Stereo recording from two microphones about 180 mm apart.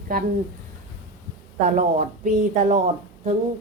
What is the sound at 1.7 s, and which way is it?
A woman's voice, 45° right (ahead or behind).